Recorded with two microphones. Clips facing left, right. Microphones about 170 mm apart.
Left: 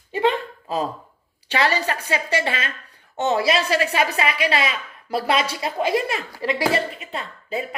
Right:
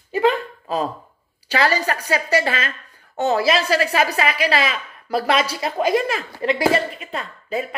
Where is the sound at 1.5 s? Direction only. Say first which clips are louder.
Right 2 dB; 35° right (ahead or behind).